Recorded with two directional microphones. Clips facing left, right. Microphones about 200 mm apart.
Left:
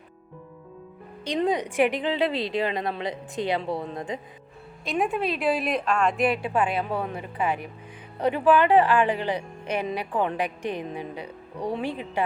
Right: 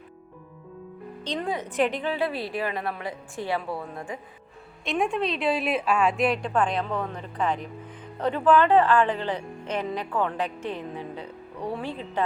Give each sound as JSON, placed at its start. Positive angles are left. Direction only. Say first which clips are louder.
{"t": 1.4, "sound": "a woman's voice", "louder": "left 4 dB", "side_deg": 15}
{"t": 4.9, "sound": "a woman's voice", "louder": "even", "side_deg": 5}